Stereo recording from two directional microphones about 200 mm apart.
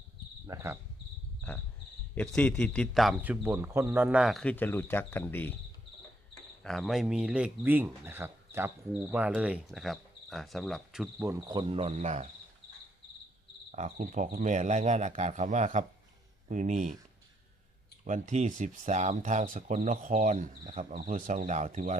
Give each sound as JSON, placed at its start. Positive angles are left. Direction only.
{"t": 0.4, "sound": "speech", "side_deg": -15}
{"t": 1.4, "sound": "cricket", "side_deg": 10}
{"t": 2.1, "sound": "speech", "side_deg": 5}
{"t": 6.6, "sound": "speech", "side_deg": 0}
{"t": 11.2, "sound": "cricket", "side_deg": -10}
{"t": 11.7, "sound": "speech", "side_deg": -30}
{"t": 13.7, "sound": "speech", "side_deg": -35}
{"t": 18.0, "sound": "speech", "side_deg": -35}